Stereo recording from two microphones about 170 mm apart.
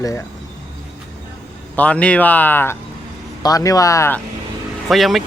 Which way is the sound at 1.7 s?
5° left (ahead or behind).